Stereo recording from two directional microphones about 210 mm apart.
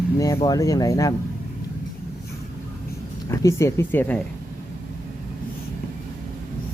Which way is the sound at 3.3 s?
15° left (ahead or behind).